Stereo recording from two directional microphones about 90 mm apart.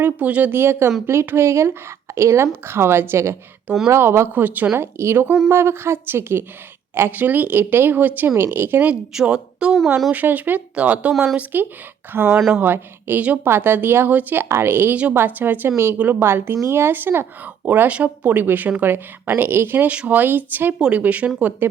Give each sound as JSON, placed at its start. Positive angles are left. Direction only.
{"t": 0.0, "sound": "speech", "side_deg": -15}
{"t": 8.9, "sound": "speech", "side_deg": -10}
{"t": 20.7, "sound": "speech", "side_deg": -10}